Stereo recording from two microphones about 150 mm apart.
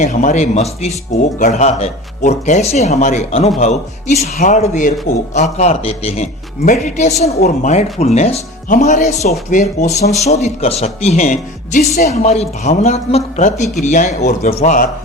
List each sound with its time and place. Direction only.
0.0 s speech: 55° left (ahead or behind); by 6.2 s 40° left (ahead or behind)
6.6 s speech: 60° left (ahead or behind)